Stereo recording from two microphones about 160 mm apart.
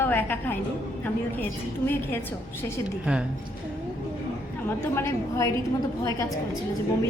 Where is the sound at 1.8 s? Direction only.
10° left (ahead or behind).